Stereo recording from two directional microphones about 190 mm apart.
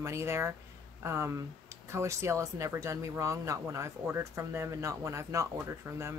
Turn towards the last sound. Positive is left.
turn(degrees=-15)  # may be behind; listen again after turning